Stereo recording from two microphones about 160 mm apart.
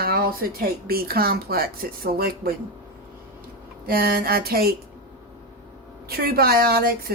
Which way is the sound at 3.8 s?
70° right (ahead or behind).